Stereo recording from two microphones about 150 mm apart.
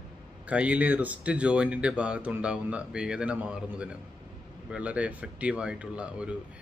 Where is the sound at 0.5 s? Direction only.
10° right (ahead or behind).